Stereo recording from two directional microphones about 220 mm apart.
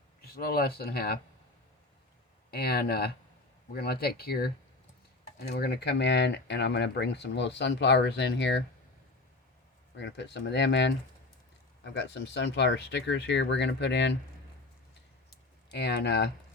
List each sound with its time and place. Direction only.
0.3 s speech: 45° left (ahead or behind)
2.5 s speech: 45° left (ahead or behind)
9.9 s speech: 50° left (ahead or behind)
15.3 s a sound: 50° left (ahead or behind)